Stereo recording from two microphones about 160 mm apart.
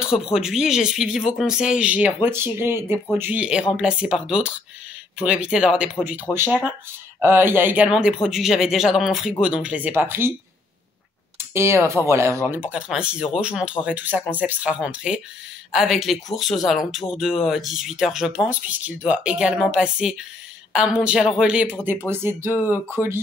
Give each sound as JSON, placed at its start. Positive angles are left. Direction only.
{"t": 0.0, "sound": "a man's voice", "side_deg": -5}
{"t": 11.3, "sound": "a sound", "side_deg": -15}
{"t": 12.1, "sound": "a man's voice", "side_deg": -15}
{"t": 22.0, "sound": "speech", "side_deg": -15}